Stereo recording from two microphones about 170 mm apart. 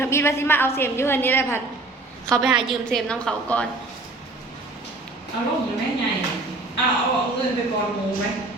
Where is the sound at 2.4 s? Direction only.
5° right (ahead or behind).